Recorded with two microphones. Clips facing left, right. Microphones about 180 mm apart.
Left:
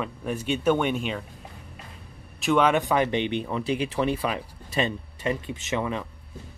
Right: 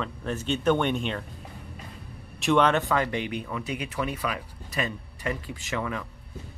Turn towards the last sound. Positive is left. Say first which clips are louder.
# left 3 dB
turn(degrees=20)  # may be behind; listen again after turning